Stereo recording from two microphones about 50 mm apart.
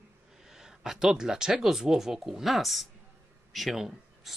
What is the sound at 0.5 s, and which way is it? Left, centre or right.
Speech, centre.